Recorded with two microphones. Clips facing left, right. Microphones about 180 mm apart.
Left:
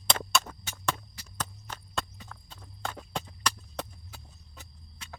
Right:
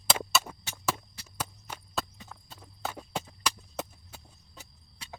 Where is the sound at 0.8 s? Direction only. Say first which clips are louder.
Even; 5° right (ahead or behind).